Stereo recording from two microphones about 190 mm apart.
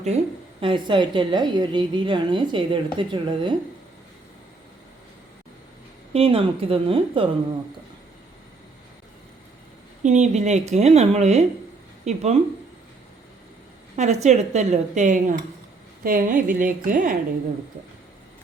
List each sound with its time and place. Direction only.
0.6 s a woman's voice: 25° right (ahead or behind)
6.1 s a woman's voice: 30° right (ahead or behind)
10.0 s a woman's voice: 40° right (ahead or behind)
13.9 s a woman's voice: 35° right (ahead or behind)